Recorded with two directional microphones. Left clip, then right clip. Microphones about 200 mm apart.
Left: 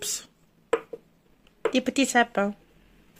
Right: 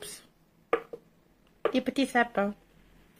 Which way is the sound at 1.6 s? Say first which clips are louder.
Left 4 dB; 25° left (ahead or behind).